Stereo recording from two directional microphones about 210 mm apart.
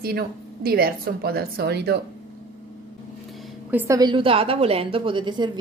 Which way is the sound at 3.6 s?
10° right (ahead or behind).